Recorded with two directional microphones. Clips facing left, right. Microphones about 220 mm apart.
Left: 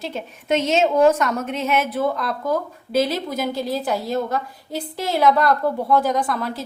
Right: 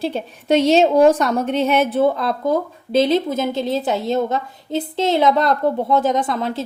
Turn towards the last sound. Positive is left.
turn(degrees=-25)  # may be behind; listen again after turning